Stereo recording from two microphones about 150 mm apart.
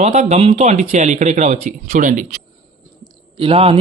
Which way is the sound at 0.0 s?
50° right (ahead or behind).